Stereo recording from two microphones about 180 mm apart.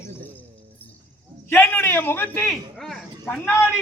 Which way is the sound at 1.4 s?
10° left (ahead or behind).